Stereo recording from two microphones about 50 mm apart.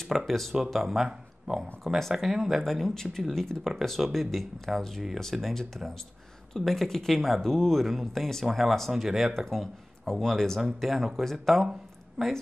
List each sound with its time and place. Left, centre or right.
0.1 s speech: centre
1.0 s a sound: centre
2.1 s a woman's voice: centre